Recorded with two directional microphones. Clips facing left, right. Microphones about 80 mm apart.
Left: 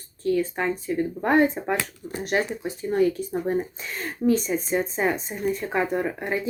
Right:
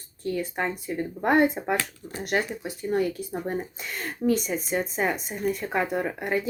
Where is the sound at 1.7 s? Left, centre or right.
Centre.